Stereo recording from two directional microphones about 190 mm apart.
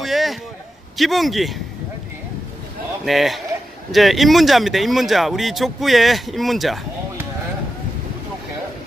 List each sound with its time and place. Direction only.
0.0 s a sound: centre (ahead or behind)
0.9 s speech: centre (ahead or behind)
3.1 s speech: centre (ahead or behind)